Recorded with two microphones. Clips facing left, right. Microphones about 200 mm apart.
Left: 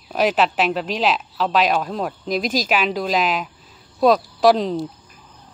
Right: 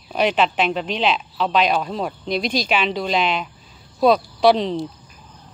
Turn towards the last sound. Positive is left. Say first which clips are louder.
# even
turn(degrees=0)  # may be behind; listen again after turning